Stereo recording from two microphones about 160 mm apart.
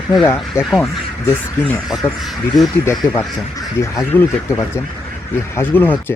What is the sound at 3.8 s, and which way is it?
Speech, 15° left (ahead or behind).